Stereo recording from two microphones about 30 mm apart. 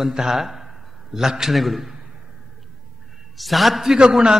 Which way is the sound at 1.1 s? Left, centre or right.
Centre.